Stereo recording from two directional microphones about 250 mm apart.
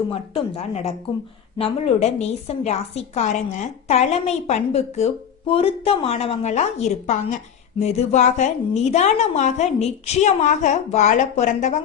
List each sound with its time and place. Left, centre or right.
0.1 s a woman's voice: left